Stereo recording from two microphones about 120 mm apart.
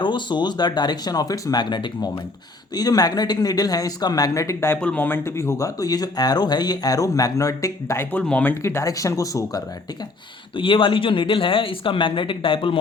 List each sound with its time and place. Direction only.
0.0 s speech: 40° left (ahead or behind); by 4.8 s 25° left (ahead or behind)
4.8 s speech: 10° left (ahead or behind)
8.1 s speech: 10° left (ahead or behind)
8.6 s speech: 25° left (ahead or behind)
10.5 s speech: 45° left (ahead or behind)